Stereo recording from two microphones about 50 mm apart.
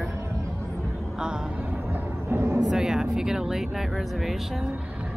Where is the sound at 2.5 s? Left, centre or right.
Centre.